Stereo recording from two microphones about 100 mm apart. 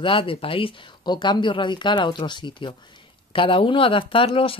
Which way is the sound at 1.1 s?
45° left (ahead or behind).